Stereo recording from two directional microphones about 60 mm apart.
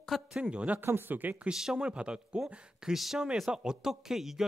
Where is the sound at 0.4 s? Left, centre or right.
Centre.